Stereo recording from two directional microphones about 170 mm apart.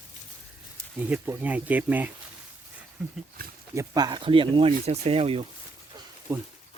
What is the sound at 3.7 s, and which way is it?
Speech, 25° right (ahead or behind).